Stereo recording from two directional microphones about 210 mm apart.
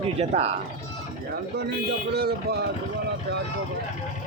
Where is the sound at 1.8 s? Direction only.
50° right (ahead or behind).